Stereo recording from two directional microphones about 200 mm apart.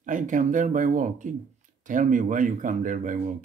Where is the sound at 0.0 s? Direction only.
40° right (ahead or behind).